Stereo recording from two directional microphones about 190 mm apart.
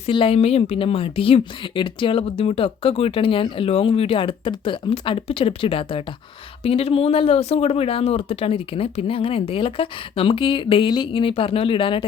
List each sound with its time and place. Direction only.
0.0 s a woman's voice: 30° left (ahead or behind)